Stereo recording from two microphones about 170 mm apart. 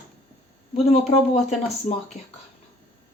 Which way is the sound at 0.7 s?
40° left (ahead or behind).